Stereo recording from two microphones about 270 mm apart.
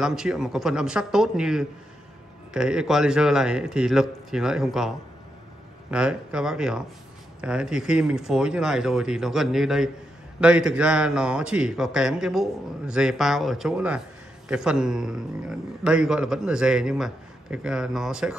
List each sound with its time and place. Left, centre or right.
0.0 s a man's voice: centre